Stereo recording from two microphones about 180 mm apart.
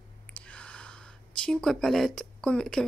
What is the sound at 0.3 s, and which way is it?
Speech, 5° left (ahead or behind).